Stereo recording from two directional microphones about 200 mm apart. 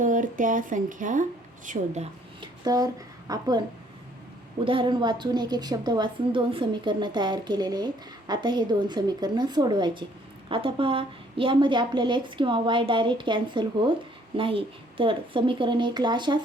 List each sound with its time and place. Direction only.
0.0 s speech: 40° right (ahead or behind)
2.6 s speech: 20° right (ahead or behind)
4.6 s a woman's voice: 25° right (ahead or behind)